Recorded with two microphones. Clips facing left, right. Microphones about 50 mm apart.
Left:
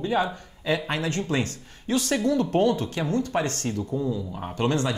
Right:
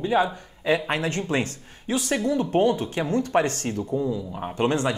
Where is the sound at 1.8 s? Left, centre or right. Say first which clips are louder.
Left 1 dB; centre.